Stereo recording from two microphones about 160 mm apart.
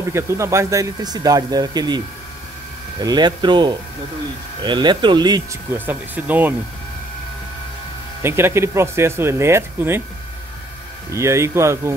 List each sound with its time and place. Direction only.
0.1 s speech: 15° right (ahead or behind)
5.9 s speech: 10° right (ahead or behind)
8.2 s speech: 15° right (ahead or behind)
11.1 s speech: 20° right (ahead or behind)